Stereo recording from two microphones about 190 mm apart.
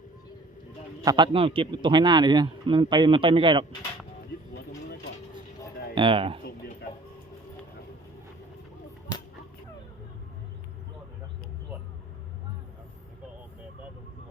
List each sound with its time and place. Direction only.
1.0 s speech: 25° right (ahead or behind)
5.9 s speech: 25° right (ahead or behind)